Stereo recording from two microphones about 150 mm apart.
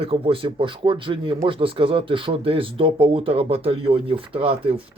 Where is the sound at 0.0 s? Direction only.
40° right (ahead or behind).